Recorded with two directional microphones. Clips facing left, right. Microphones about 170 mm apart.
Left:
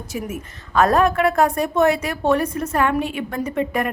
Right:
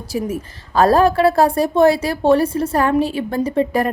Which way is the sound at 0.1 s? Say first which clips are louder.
Right 7 dB; 30° right (ahead or behind).